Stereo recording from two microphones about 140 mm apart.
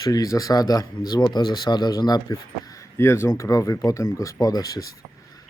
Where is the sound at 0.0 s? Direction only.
25° left (ahead or behind).